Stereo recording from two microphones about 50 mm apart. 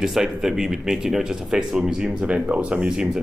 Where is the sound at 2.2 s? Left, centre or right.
Right.